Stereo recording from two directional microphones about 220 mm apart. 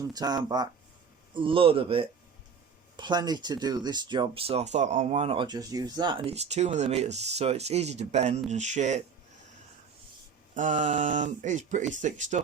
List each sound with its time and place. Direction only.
0.0 s speech: 15° right (ahead or behind); by 9.0 s 30° right (ahead or behind)
10.5 s speech: 35° right (ahead or behind)